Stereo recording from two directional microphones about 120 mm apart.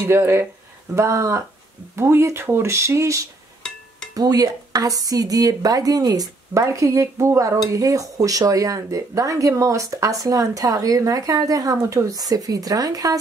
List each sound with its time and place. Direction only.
0.0 s speech: 20° right (ahead or behind)